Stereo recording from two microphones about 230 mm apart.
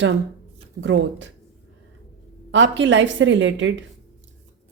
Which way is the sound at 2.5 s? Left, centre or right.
Right.